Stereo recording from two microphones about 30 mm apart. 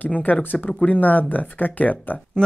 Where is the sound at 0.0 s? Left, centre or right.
Left.